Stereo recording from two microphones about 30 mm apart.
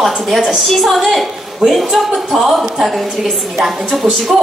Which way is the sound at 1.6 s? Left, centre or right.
Right.